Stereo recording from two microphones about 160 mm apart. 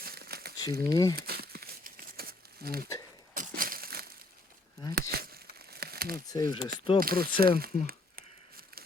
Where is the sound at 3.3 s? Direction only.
60° right (ahead or behind).